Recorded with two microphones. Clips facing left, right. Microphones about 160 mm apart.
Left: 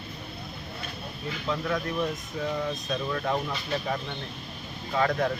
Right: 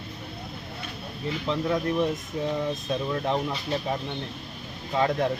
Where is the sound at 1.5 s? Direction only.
25° right (ahead or behind).